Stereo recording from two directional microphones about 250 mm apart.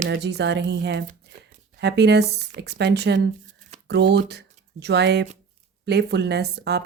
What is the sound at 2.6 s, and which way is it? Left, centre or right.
Speech, right.